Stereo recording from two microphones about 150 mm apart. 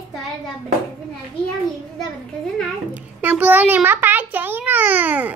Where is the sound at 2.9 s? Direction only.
10° right (ahead or behind).